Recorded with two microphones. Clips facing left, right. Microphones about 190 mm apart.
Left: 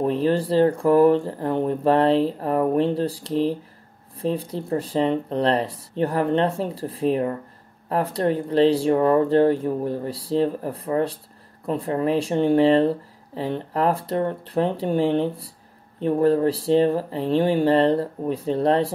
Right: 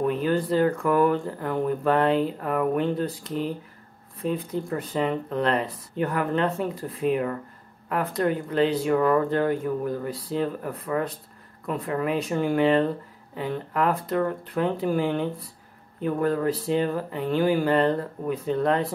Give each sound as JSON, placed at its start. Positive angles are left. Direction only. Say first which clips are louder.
{"t": 0.0, "sound": "speech", "louder": "left 3 dB", "side_deg": 30}